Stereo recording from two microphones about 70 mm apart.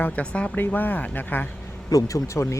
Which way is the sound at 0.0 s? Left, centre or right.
Centre.